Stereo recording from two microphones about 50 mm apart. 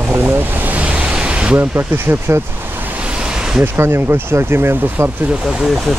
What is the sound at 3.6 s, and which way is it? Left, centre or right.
Speech, right.